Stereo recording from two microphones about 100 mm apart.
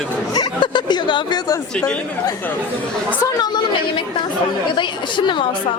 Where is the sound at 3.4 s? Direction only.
45° left (ahead or behind).